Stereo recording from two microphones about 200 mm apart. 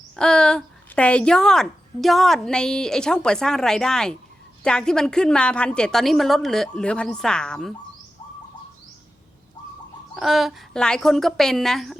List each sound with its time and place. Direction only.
0.2 s a woman's voice: 5° left (ahead or behind)
10.2 s a woman's voice: centre (ahead or behind)